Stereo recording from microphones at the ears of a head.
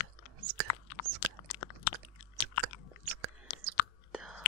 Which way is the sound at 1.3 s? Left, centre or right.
Left.